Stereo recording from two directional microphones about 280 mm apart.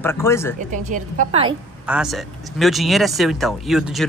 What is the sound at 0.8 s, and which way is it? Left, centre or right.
Speech, right.